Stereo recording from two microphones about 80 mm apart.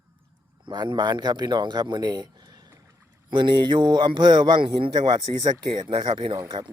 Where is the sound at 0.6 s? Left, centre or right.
Right.